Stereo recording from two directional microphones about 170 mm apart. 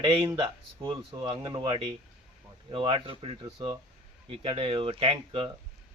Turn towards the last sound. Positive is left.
turn(degrees=-35)  # may be behind; listen again after turning